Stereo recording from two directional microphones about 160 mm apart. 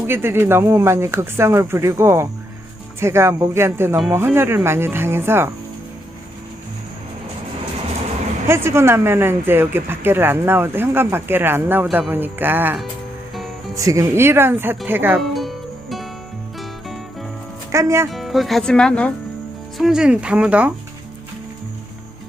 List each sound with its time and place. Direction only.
0.0 s speech: 15° right (ahead or behind)
8.4 s speech: 15° right (ahead or behind)
15.2 s music: centre (ahead or behind)
17.7 s speech: 15° right (ahead or behind)
18.1 s speech: centre (ahead or behind)
19.8 s speech: 5° right (ahead or behind)